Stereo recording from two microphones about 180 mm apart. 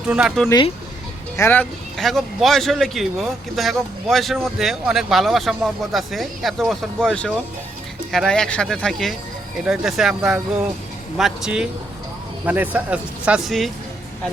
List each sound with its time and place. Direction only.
0.1 s speech: 5° right (ahead or behind)
0.4 s speech: 25° left (ahead or behind)
1.4 s speech: 10° left (ahead or behind)